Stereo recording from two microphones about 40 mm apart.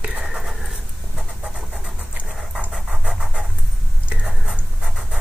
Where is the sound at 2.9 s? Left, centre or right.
Right.